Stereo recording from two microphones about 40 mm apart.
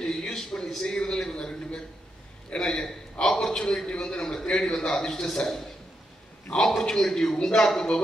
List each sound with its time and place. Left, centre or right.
0.0 s a sound: left
1.3 s a man's voice: left
6.8 s a man's voice: centre